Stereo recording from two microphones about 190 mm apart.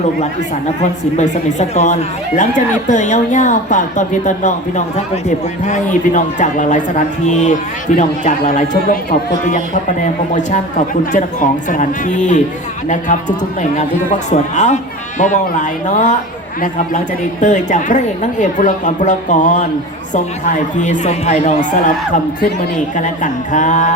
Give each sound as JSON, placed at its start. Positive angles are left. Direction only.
{"t": 0.8, "sound": "a woman's voice", "side_deg": 40}
{"t": 5.6, "sound": "a woman's voice", "side_deg": 40}
{"t": 10.0, "sound": "a woman's voice", "side_deg": 40}